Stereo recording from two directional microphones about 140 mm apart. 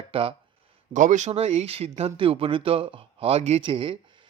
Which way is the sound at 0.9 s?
60° right (ahead or behind).